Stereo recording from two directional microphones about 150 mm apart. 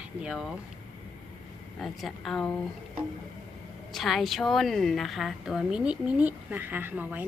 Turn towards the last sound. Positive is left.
turn(degrees=-10)  # may be behind; listen again after turning